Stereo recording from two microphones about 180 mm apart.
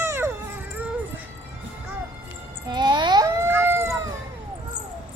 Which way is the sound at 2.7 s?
25° right (ahead or behind).